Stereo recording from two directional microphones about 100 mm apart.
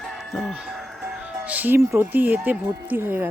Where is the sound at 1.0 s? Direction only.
10° right (ahead or behind).